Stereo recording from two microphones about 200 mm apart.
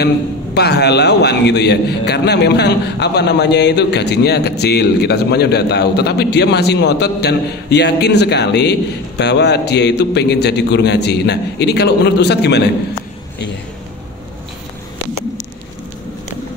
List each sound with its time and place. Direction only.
0.6 s a man's voice: 55° left (ahead or behind)